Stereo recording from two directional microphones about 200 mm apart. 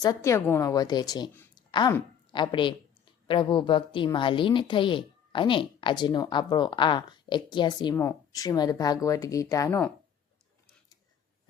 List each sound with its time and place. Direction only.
0.0 s a woman's voice: 15° left (ahead or behind)